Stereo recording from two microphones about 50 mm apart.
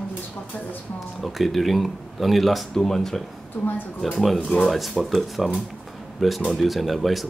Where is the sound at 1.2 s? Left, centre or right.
Centre.